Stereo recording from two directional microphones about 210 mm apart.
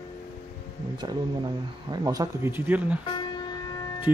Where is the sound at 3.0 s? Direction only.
20° left (ahead or behind).